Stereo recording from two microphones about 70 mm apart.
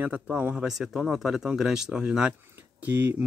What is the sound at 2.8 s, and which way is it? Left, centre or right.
Speech, right.